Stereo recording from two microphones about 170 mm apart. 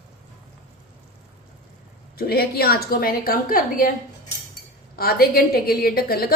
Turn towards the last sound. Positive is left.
turn(degrees=65)  # may be behind; listen again after turning